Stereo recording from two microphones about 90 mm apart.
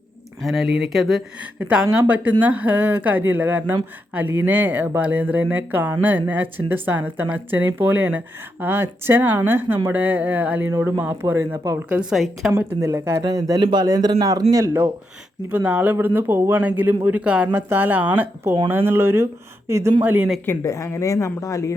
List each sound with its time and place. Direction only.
0.4 s speech: centre (ahead or behind)
1.5 s speech: 15° right (ahead or behind)
12.1 s speech: centre (ahead or behind)
12.5 s speech: 30° right (ahead or behind)
13.2 s speech: 40° right (ahead or behind)
13.6 s speech: 60° right (ahead or behind)
13.8 s speech: 45° right (ahead or behind)
15.4 s speech: 15° right (ahead or behind)
20.6 s speech: 35° left (ahead or behind)